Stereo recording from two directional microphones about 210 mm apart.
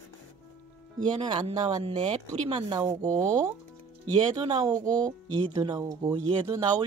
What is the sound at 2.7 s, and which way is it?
Speech, 15° right (ahead or behind).